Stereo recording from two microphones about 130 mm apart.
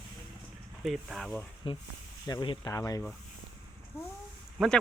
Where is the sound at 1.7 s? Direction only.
40° left (ahead or behind); by 3.0 s 25° left (ahead or behind).